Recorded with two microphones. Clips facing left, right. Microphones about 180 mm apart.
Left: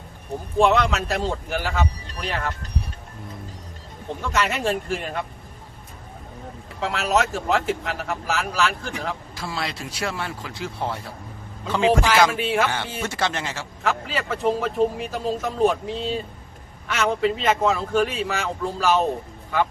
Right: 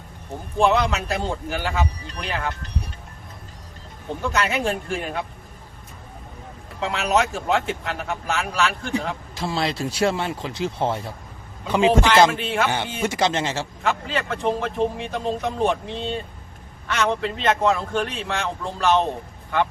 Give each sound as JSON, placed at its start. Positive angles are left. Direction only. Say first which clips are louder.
{"t": 0.6, "sound": "speech", "louder": "even", "side_deg": 0}
{"t": 4.3, "sound": "speech", "louder": "even", "side_deg": 0}
{"t": 6.7, "sound": "speech", "louder": "right 1 dB", "side_deg": 0}
{"t": 9.3, "sound": "a man's voice", "louder": "right 5 dB", "side_deg": -25}
{"t": 12.3, "sound": "speech", "louder": "left 1 dB", "side_deg": 0}
{"t": 13.0, "sound": "a man's voice", "louder": "right 5 dB", "side_deg": -15}
{"t": 13.8, "sound": "speech", "louder": "even", "side_deg": 5}